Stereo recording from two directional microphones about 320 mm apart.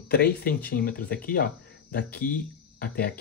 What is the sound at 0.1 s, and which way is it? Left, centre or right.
Speech, left.